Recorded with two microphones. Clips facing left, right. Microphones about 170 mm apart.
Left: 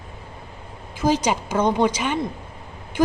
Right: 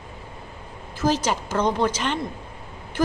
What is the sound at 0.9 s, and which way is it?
A woman's voice, 15° left (ahead or behind).